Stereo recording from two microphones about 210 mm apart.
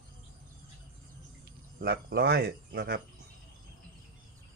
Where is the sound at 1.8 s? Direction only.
50° right (ahead or behind).